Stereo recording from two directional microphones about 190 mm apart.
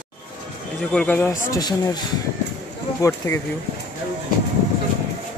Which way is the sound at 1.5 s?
20° left (ahead or behind).